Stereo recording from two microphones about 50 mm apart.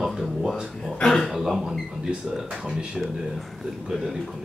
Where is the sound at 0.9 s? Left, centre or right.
Centre.